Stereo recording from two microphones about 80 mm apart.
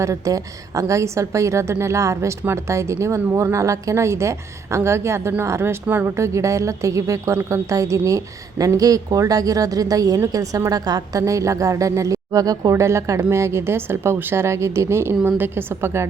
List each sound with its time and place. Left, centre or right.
0.0 s a woman's voice: right
5.9 s a woman's voice: right
6.1 s a woman's voice: right